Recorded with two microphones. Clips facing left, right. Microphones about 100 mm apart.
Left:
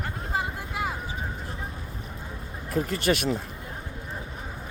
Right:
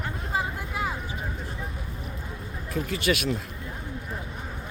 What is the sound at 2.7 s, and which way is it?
Speech, 40° left (ahead or behind).